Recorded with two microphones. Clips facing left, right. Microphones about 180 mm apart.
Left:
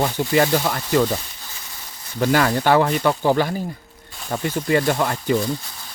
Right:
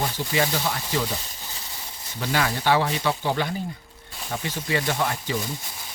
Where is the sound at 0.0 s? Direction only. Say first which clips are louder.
Left 7 dB; 55° left (ahead or behind).